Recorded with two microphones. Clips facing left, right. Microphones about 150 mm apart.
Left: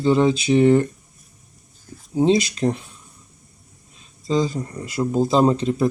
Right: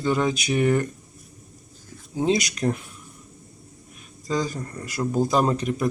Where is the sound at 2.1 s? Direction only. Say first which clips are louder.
Left 5 dB; 30° left (ahead or behind).